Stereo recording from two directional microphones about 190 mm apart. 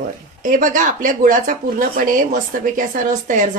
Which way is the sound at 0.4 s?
45° right (ahead or behind).